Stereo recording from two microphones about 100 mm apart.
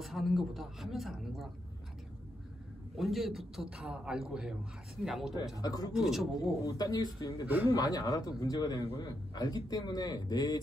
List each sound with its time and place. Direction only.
0.0 s a man's voice: centre (ahead or behind)
3.0 s a man's voice: centre (ahead or behind)
5.6 s a man's voice: 40° left (ahead or behind)
5.9 s a man's voice: centre (ahead or behind)
6.6 s a man's voice: 40° left (ahead or behind)
7.4 s a man's voice: 20° right (ahead or behind)
7.7 s a man's voice: 35° left (ahead or behind)